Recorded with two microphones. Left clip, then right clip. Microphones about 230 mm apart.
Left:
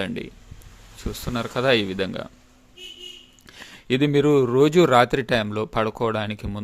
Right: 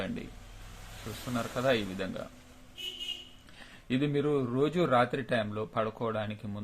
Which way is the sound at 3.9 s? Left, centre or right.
Left.